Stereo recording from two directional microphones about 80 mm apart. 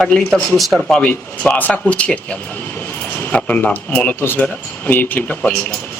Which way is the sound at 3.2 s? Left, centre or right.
Centre.